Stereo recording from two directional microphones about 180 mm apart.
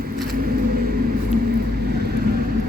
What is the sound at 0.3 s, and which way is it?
Vehicle, 55° right (ahead or behind).